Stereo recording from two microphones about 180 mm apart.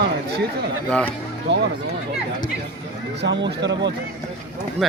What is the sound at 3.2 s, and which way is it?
Speech, 75° right (ahead or behind).